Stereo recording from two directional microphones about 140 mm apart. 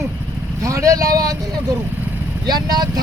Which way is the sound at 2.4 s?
30° right (ahead or behind).